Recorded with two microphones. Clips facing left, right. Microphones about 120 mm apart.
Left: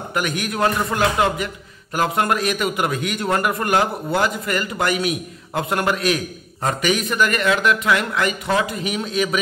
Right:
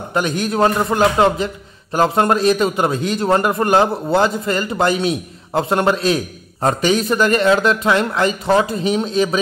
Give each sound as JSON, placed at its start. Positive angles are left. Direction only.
{"t": 0.1, "sound": "a man's voice", "side_deg": -25}